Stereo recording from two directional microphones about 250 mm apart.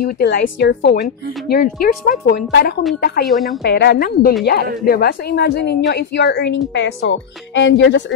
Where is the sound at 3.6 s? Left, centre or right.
Left.